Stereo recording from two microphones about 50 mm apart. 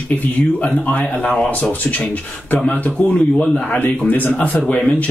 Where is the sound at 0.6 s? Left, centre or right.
Left.